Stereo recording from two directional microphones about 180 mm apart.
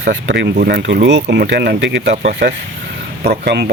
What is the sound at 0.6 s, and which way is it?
Speech, 60° right (ahead or behind).